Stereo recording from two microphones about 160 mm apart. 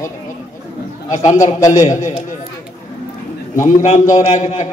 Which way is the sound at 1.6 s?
20° left (ahead or behind).